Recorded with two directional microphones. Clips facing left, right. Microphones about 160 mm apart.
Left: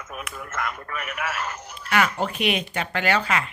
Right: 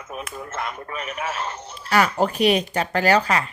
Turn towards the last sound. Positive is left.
turn(degrees=-40)  # may be behind; listen again after turning